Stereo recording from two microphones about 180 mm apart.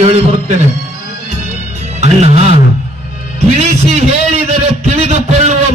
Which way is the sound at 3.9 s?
35° right (ahead or behind).